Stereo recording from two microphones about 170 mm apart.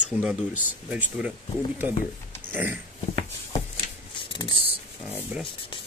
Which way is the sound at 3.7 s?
30° left (ahead or behind).